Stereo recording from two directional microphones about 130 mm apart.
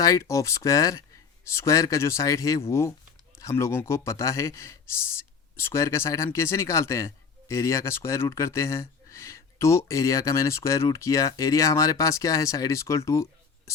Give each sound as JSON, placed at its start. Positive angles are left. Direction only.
{"t": 0.0, "sound": "speech", "side_deg": 25}